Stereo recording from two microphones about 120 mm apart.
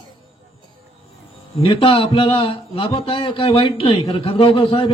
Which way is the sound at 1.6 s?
45° left (ahead or behind).